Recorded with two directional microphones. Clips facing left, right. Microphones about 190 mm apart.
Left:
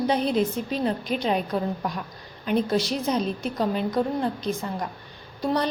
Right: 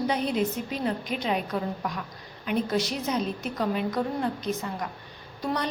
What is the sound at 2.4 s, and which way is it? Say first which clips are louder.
A woman's voice: left 3 dB; 30° left (ahead or behind).